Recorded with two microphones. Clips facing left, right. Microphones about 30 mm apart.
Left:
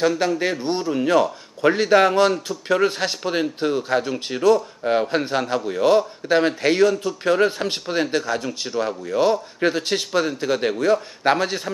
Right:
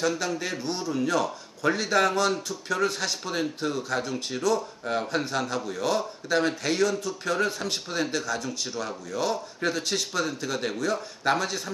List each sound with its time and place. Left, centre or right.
0.4 s a man's voice: left